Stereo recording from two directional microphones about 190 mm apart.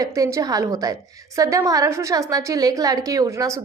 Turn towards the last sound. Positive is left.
turn(degrees=-20)  # may be behind; listen again after turning